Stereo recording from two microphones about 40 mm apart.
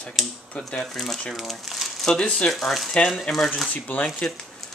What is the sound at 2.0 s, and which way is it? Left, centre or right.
Speech, centre.